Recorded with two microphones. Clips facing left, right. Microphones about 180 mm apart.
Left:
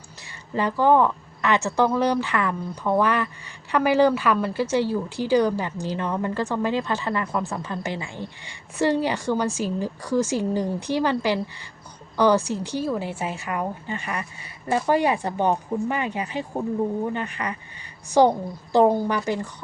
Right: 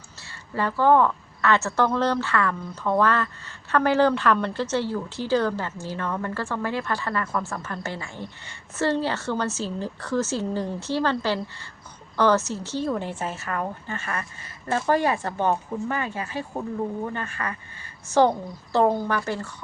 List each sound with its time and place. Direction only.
0.5 s speech: 15° left (ahead or behind)